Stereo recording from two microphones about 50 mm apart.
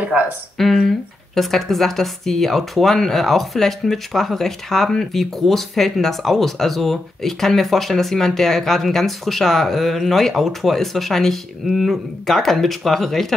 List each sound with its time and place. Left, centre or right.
0.1 s speech: right
0.6 s speech: centre